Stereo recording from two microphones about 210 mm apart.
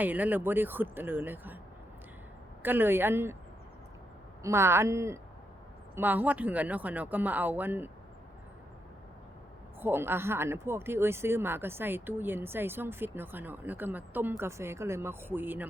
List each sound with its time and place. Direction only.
0.0 s speech: 10° right (ahead or behind)
2.6 s speech: 10° right (ahead or behind)
4.4 s speech: 10° right (ahead or behind)
9.8 s speech: 10° right (ahead or behind)